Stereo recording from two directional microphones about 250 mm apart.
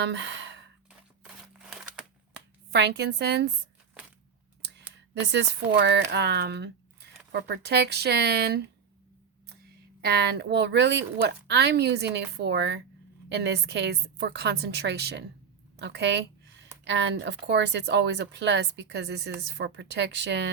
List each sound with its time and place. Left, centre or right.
0.0 s speech: right
0.9 s a sound: centre
2.7 s speech: right
4.9 s speech: right
10.0 s speech: right